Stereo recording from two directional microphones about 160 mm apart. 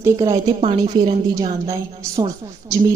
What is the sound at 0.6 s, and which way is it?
A woman's voice, 40° right (ahead or behind).